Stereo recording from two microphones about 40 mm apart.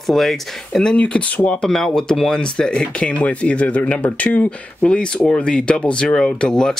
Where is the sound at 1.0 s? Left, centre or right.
Left.